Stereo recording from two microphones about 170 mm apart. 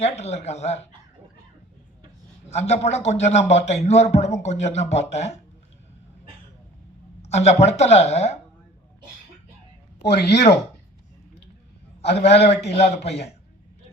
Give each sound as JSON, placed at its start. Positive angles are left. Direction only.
{"t": 0.0, "sound": "a man's voice", "side_deg": 40}
{"t": 2.5, "sound": "a man's voice", "side_deg": 40}
{"t": 7.2, "sound": "a man's voice", "side_deg": 40}
{"t": 10.0, "sound": "speech", "side_deg": 80}
{"t": 12.0, "sound": "a man's voice", "side_deg": 80}
{"t": 12.7, "sound": "a man's voice", "side_deg": 40}